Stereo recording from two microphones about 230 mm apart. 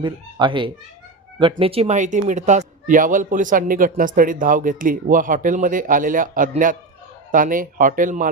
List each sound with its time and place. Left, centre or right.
0.0 s speech: centre; by 8.3 s right